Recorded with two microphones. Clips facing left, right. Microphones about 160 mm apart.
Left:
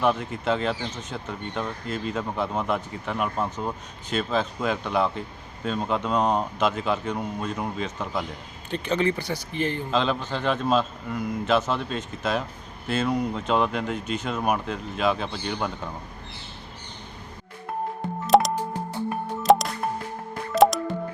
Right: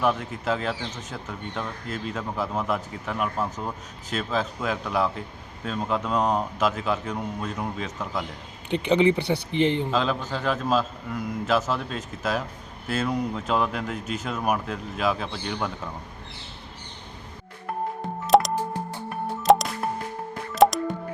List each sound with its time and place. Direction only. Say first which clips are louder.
0.0 s speech: left 1 dB; centre (ahead or behind)
8.7 s speech: right 4 dB; 15° right (ahead or behind)
9.1 s speech: right 5 dB; 60° right (ahead or behind)
9.5 s speech: right 5 dB; 20° right (ahead or behind)
9.9 s speech: left 1 dB; 5° right (ahead or behind)
18.3 s music: even; centre (ahead or behind)